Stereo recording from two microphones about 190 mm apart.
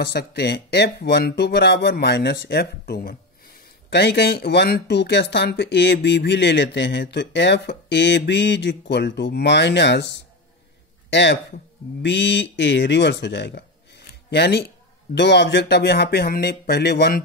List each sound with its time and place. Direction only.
0.0 s speech: 60° left (ahead or behind)